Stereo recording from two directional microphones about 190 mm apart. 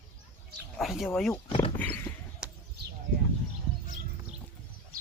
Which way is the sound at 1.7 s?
10° left (ahead or behind).